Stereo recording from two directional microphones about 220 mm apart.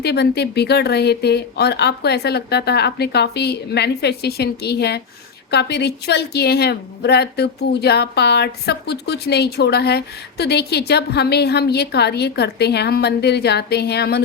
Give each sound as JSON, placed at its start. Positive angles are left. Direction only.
{"t": 0.0, "sound": "a woman's voice", "side_deg": 50}